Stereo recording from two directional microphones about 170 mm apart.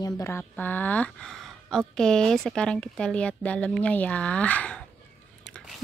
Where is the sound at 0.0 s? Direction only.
15° left (ahead or behind).